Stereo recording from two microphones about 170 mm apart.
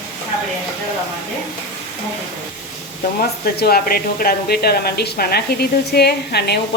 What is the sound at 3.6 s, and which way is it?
A woman's voice, 65° left (ahead or behind).